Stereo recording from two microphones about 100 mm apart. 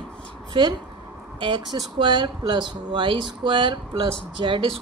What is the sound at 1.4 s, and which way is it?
Speech, 55° right (ahead or behind).